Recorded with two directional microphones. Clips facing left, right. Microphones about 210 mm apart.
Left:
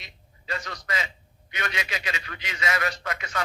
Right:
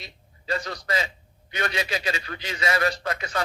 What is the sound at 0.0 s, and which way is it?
A man's voice, 35° right (ahead or behind).